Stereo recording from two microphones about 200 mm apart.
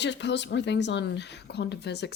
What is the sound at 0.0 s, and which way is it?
Speech, 60° left (ahead or behind).